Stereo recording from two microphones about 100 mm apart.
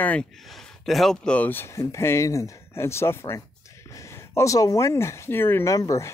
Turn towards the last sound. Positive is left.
turn(degrees=35)  # may be behind; listen again after turning